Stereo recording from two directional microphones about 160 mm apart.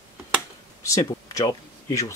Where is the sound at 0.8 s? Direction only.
20° left (ahead or behind).